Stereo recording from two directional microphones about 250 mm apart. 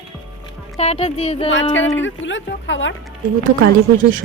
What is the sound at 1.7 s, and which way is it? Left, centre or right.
Speech, left.